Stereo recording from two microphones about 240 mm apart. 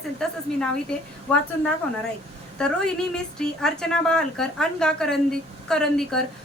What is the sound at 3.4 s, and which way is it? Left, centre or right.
A woman's voice, centre.